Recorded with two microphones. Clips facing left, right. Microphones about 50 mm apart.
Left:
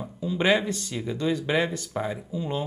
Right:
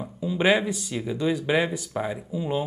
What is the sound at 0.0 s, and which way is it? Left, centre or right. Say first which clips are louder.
Speech: right 2 dB; centre.